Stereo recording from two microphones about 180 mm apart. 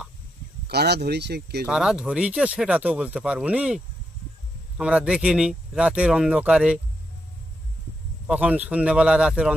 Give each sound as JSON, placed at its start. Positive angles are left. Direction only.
{"t": 0.7, "sound": "speech", "side_deg": -65}
{"t": 1.7, "sound": "speech", "side_deg": -5}
{"t": 8.3, "sound": "speech", "side_deg": -5}